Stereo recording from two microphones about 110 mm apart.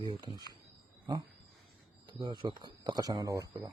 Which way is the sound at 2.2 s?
45° right (ahead or behind).